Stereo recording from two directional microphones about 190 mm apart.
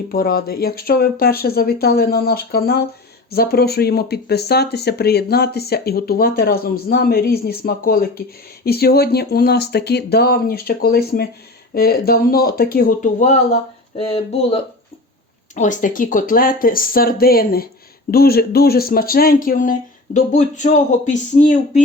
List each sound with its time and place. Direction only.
0.1 s speech: 50° left (ahead or behind)
15.5 s speech: 40° left (ahead or behind)